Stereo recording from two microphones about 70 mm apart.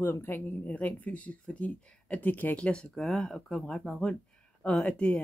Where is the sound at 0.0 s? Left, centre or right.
Left.